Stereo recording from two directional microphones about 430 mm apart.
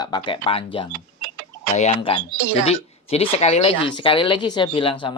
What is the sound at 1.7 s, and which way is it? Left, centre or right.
Speech, centre.